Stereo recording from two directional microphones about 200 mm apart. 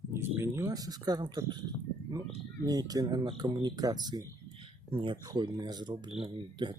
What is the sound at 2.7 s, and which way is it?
Speech, 20° right (ahead or behind).